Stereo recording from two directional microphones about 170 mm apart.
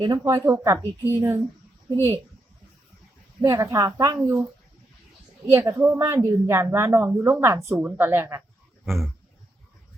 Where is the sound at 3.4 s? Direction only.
20° right (ahead or behind).